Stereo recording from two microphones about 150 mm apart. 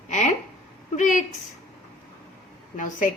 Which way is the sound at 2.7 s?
60° left (ahead or behind).